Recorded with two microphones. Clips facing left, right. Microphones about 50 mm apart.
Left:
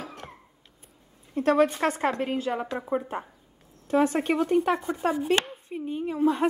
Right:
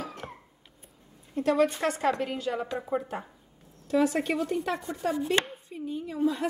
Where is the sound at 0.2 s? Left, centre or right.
Centre.